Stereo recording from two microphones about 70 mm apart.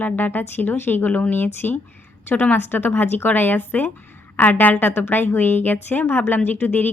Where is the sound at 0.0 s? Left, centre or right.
Left.